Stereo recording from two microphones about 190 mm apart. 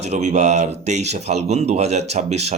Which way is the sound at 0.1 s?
35° right (ahead or behind).